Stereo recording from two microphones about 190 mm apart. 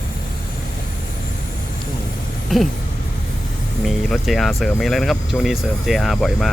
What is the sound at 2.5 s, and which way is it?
Speech, centre (ahead or behind).